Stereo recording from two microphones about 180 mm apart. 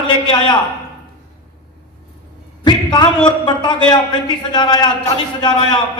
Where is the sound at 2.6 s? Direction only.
25° left (ahead or behind).